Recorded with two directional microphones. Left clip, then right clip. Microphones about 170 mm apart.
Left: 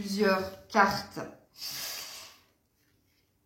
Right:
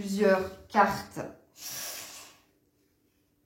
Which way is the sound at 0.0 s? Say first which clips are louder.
Right 2 dB; 20° right (ahead or behind).